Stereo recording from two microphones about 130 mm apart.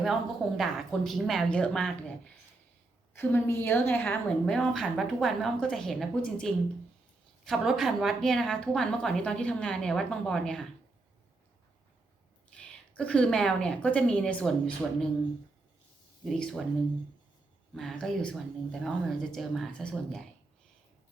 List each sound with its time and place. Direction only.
0.0 s a woman's voice: centre (ahead or behind)
4.5 s a woman's voice: 5° left (ahead or behind)
12.5 s a woman's voice: 10° left (ahead or behind)
16.4 s a woman's voice: 5° left (ahead or behind)
17.7 s a woman's voice: centre (ahead or behind)